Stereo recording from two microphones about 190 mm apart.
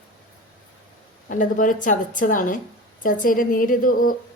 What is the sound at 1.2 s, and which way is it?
A woman's voice, 45° left (ahead or behind).